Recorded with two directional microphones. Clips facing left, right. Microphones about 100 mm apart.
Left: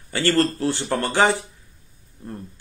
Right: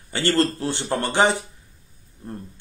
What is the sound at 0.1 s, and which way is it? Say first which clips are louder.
A man's voice: left 1 dB; 20° right (ahead or behind).